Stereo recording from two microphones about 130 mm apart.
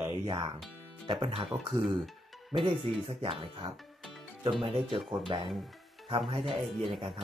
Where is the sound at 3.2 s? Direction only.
45° right (ahead or behind).